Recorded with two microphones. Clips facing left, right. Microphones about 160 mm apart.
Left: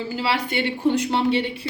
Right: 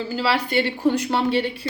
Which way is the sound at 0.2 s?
20° left (ahead or behind).